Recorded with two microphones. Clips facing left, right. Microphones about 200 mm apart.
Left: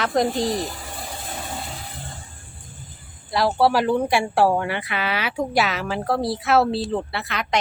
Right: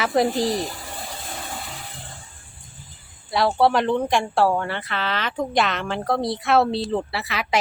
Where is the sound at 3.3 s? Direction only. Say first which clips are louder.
Even; centre (ahead or behind).